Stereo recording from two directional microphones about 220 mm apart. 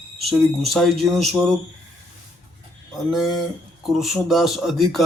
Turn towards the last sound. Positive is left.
turn(degrees=0)  # may be behind; listen again after turning